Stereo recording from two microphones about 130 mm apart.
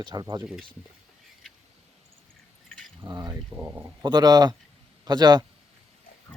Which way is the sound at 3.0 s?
30° right (ahead or behind).